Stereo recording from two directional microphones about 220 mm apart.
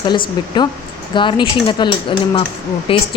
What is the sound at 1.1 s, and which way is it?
Speech, 20° left (ahead or behind).